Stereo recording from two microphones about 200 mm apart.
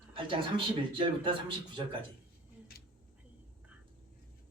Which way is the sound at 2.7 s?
50° left (ahead or behind).